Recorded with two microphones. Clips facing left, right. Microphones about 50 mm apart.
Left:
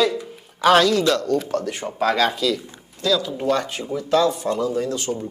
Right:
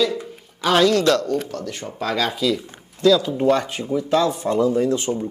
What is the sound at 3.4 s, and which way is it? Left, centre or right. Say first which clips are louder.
Speech: right 3 dB; centre.